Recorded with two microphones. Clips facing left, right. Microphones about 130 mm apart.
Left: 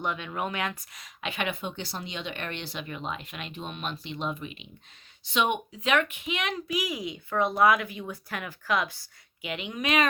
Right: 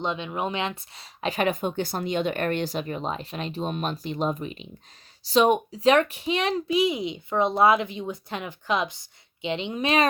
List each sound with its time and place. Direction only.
0.0 s speech: 20° right (ahead or behind)